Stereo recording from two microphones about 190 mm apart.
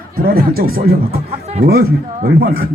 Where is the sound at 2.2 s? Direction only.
50° right (ahead or behind).